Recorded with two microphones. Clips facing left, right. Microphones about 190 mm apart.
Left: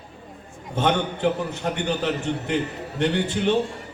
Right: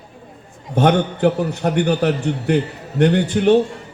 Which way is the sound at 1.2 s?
40° right (ahead or behind).